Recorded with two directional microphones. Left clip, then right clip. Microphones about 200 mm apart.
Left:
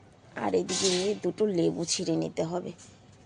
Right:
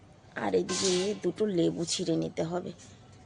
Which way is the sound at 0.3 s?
10° left (ahead or behind).